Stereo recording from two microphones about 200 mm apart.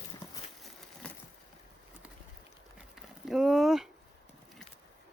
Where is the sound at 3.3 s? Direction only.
Centre (ahead or behind).